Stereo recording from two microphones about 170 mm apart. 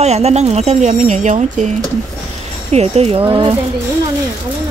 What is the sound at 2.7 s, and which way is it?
Speech, 40° right (ahead or behind).